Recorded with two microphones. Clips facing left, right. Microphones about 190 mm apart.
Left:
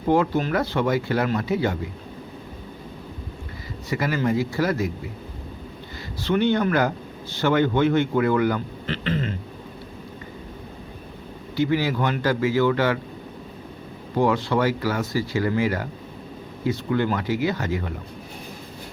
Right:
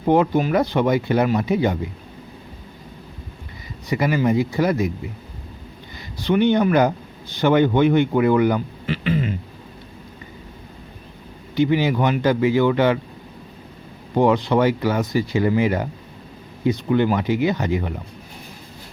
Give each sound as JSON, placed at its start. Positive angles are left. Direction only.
{"t": 0.1, "sound": "speech", "side_deg": -15}
{"t": 3.8, "sound": "speech", "side_deg": -15}
{"t": 6.2, "sound": "speech", "side_deg": -15}
{"t": 11.5, "sound": "speech", "side_deg": -20}
{"t": 14.2, "sound": "speech", "side_deg": -20}